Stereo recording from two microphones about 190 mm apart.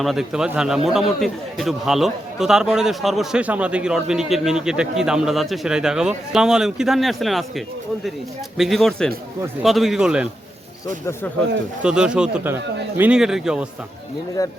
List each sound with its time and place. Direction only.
0.0 s a man's voice: centre (ahead or behind)
11.8 s a man's voice: 5° right (ahead or behind)
14.4 s speech: 15° left (ahead or behind)